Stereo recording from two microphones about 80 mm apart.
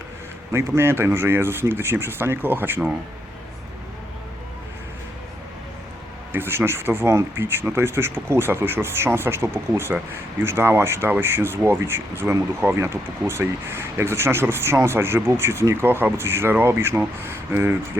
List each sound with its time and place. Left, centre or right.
0.5 s speech: right
6.3 s speech: right